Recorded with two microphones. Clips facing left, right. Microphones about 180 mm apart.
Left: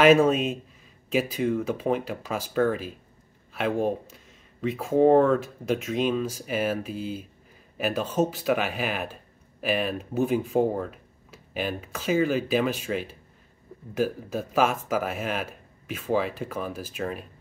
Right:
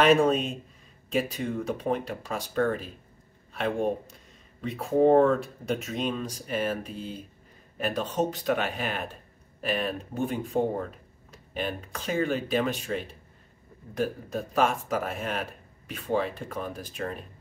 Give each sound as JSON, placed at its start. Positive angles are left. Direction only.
{"t": 0.0, "sound": "speech", "side_deg": 0}